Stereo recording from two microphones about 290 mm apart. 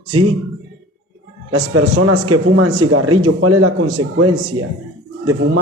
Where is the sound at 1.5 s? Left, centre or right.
Right.